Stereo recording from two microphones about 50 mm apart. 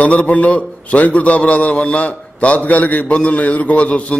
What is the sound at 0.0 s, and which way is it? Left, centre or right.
A man's voice, left.